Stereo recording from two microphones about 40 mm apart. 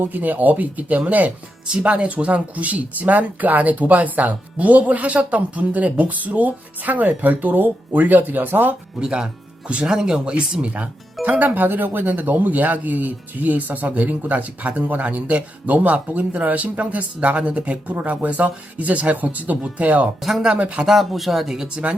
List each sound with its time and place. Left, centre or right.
0.0 s speech: right
9.0 s speech: centre
10.7 s speech: right
20.8 s speech: centre